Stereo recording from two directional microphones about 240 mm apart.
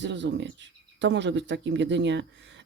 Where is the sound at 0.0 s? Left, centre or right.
Right.